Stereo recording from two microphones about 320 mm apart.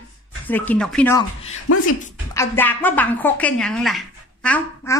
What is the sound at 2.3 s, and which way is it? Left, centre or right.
A woman's voice, centre.